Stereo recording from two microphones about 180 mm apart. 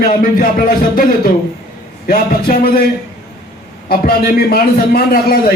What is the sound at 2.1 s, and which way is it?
Speech, 55° left (ahead or behind).